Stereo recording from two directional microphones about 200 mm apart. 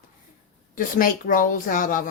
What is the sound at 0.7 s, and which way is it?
A woman's voice, 45° left (ahead or behind).